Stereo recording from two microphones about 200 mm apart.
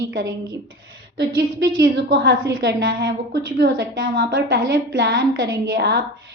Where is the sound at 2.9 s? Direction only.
50° right (ahead or behind).